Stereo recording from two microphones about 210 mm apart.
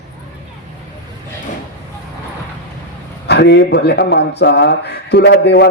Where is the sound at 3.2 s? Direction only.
55° left (ahead or behind).